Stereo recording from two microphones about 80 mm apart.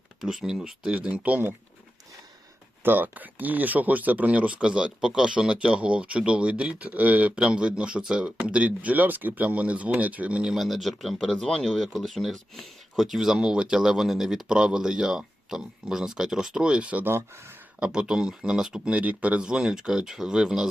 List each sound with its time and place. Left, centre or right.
0.2 s speech: centre; by 1.5 s right
2.8 s speech: right
10.5 s speech: centre